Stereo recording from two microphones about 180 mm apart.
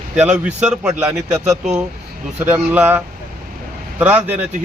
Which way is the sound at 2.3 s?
10° right (ahead or behind).